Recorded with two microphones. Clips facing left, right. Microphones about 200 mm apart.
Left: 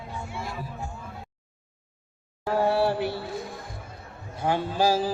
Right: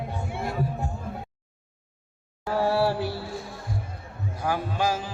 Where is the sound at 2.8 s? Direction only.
20° left (ahead or behind).